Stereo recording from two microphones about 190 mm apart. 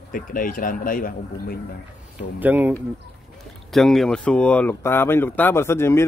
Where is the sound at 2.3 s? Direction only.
10° right (ahead or behind).